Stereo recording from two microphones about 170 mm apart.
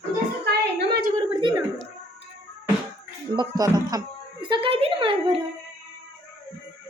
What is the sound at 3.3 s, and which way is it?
A woman's voice, 20° right (ahead or behind).